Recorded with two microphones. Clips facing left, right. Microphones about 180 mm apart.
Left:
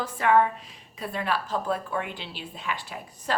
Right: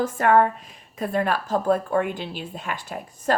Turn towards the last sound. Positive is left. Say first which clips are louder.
# right 7 dB
turn(degrees=-45)  # may be behind; listen again after turning